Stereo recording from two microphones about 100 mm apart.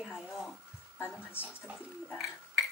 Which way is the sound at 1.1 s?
20° left (ahead or behind).